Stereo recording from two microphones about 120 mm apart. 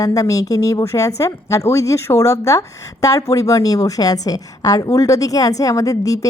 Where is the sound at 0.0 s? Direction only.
30° left (ahead or behind).